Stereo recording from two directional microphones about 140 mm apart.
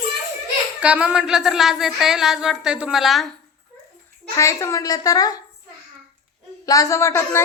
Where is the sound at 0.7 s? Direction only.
10° right (ahead or behind).